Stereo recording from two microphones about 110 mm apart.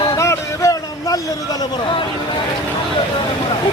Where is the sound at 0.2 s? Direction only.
30° left (ahead or behind).